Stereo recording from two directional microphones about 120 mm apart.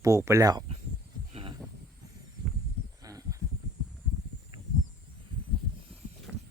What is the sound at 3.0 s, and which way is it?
Horse, 30° right (ahead or behind).